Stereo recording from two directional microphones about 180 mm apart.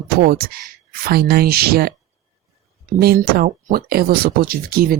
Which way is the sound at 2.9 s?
55° right (ahead or behind).